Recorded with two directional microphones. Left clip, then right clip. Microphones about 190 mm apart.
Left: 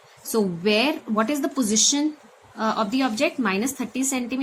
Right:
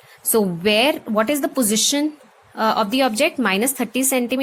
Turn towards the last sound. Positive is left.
turn(degrees=-50)  # may be behind; listen again after turning